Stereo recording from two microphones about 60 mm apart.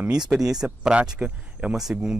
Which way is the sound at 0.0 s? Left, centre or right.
Centre.